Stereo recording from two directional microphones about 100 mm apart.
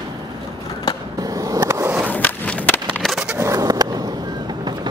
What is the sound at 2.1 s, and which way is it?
Skateboard, 20° left (ahead or behind).